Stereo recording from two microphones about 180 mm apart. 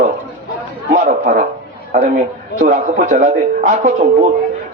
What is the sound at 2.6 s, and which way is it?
A man's voice, 40° right (ahead or behind).